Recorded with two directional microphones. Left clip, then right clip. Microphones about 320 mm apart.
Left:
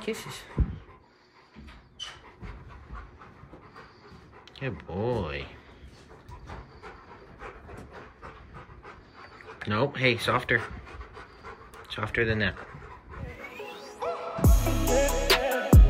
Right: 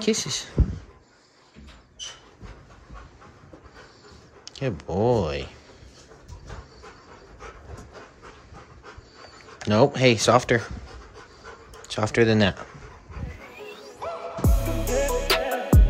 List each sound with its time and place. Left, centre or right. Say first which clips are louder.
0.0 s speech: right 9 dB; right
4.5 s speech: right 7 dB; centre
9.6 s speech: right 7 dB; centre
11.9 s speech: right 7 dB; centre
13.9 s music: even; centre